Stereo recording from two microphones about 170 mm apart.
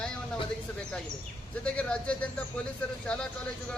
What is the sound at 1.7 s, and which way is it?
Speech, 5° left (ahead or behind).